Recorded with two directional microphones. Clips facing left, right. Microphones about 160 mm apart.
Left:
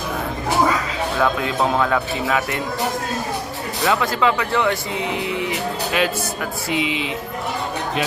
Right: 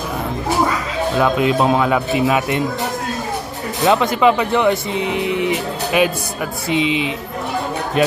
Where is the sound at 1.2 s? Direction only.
20° right (ahead or behind).